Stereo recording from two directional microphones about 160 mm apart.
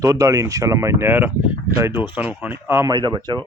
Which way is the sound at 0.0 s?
20° right (ahead or behind).